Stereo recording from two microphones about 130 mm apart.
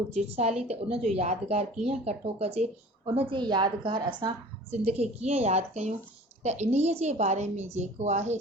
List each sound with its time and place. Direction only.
0.1 s a woman's voice: 55° right (ahead or behind)
3.2 s a woman's voice: 40° right (ahead or behind)
4.7 s a woman's voice: 55° right (ahead or behind)